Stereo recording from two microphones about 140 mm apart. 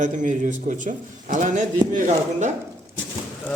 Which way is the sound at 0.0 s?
65° right (ahead or behind).